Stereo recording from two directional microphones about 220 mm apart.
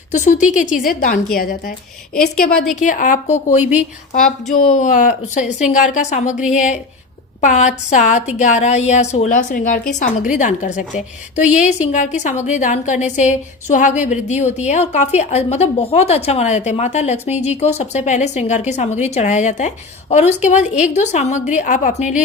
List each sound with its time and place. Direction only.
0.1 s a woman's voice: 35° left (ahead or behind)
2.1 s a woman's voice: 5° left (ahead or behind)
2.7 s a woman's voice: 35° left (ahead or behind)